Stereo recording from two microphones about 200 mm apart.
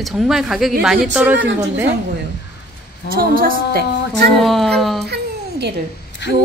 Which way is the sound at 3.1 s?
45° right (ahead or behind).